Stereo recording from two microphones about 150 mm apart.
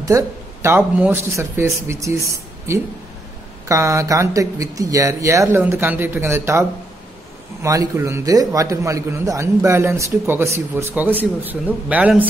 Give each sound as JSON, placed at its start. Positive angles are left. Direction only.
{"t": 0.0, "sound": "a man's voice", "side_deg": -20}
{"t": 7.6, "sound": "a man's voice", "side_deg": -20}